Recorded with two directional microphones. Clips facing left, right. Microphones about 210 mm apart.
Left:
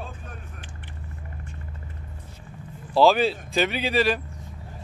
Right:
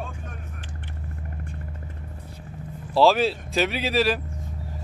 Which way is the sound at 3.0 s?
Centre (ahead or behind).